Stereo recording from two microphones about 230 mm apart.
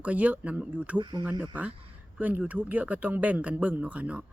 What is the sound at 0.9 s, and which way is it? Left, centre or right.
Speech, right.